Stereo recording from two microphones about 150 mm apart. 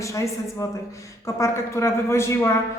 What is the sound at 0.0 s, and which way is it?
A woman's voice, 20° left (ahead or behind).